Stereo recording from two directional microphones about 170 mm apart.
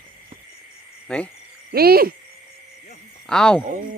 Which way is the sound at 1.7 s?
65° right (ahead or behind).